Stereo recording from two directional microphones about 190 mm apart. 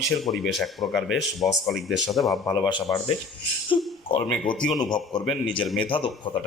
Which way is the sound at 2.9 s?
15° left (ahead or behind).